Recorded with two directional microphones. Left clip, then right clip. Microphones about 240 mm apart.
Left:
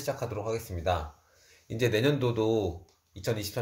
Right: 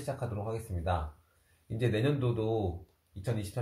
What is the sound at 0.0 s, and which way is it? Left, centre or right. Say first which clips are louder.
Speech: left 5 dB; left.